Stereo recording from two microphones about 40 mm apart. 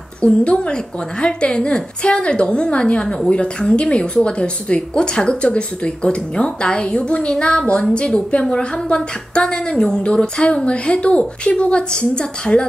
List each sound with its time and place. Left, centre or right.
0.2 s speech: left